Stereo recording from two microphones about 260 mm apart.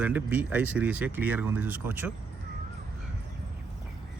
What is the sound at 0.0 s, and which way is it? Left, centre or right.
Speech, centre.